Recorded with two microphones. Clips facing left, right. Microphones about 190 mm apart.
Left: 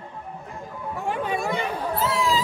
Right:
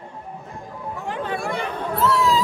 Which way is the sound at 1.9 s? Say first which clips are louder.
Right 5 dB; centre (ahead or behind).